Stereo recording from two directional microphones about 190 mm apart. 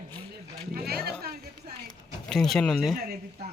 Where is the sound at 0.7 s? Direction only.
55° right (ahead or behind).